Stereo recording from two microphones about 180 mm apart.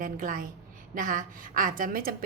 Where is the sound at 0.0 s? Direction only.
50° right (ahead or behind).